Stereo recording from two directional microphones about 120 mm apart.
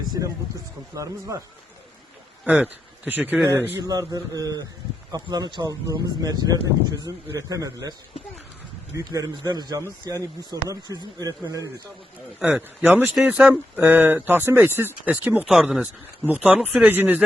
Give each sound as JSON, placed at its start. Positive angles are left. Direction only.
{"t": 0.9, "sound": "a man's voice", "side_deg": -25}
{"t": 2.4, "sound": "speech", "side_deg": -15}
{"t": 3.8, "sound": "a man's voice", "side_deg": -30}
{"t": 9.0, "sound": "a man's voice", "side_deg": -30}
{"t": 12.4, "sound": "a man's voice", "side_deg": -5}
{"t": 12.8, "sound": "speech", "side_deg": -15}